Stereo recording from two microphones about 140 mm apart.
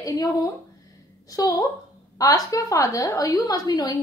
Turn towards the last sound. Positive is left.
turn(degrees=25)  # may be behind; listen again after turning